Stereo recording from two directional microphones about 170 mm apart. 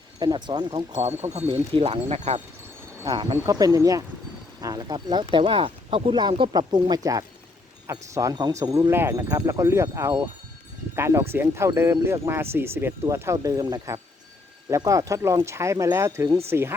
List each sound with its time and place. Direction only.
0.2 s speech: 25° right (ahead or behind)